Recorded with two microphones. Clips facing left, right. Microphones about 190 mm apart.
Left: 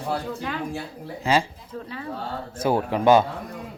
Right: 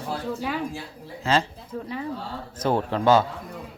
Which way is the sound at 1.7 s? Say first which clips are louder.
Right 2 dB; 10° right (ahead or behind).